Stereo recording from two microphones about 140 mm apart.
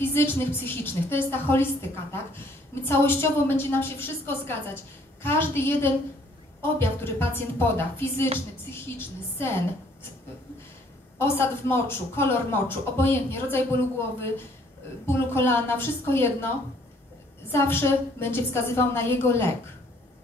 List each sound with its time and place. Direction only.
0.0 s a woman's voice: 15° left (ahead or behind)
11.1 s a woman's voice: 15° left (ahead or behind)